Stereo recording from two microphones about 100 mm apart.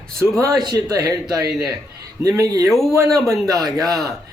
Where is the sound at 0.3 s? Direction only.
35° right (ahead or behind).